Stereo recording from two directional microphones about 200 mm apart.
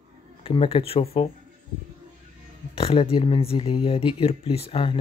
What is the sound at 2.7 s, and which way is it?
Speech, 30° left (ahead or behind).